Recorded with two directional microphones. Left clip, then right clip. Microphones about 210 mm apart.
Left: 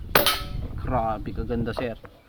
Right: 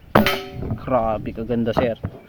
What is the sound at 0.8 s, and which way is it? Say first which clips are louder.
A man's voice: right 6 dB; 45° right (ahead or behind).